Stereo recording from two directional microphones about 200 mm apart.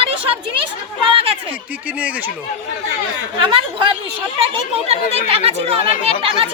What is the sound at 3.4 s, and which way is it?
Speech, 25° right (ahead or behind).